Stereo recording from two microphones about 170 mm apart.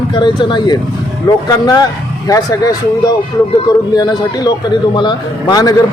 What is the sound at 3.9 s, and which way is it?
Speech, 25° left (ahead or behind).